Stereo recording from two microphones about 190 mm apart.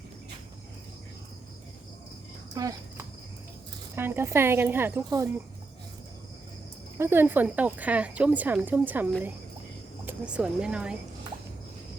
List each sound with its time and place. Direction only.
2.6 s cricket: 20° right (ahead or behind)
3.9 s speech: 10° right (ahead or behind)
7.0 s speech: 10° right (ahead or behind)
10.1 s speech: 5° right (ahead or behind)